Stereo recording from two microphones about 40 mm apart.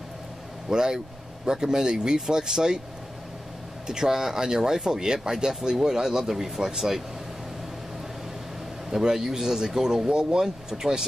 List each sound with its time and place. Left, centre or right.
0.7 s speech: centre
3.8 s speech: centre
8.9 s speech: centre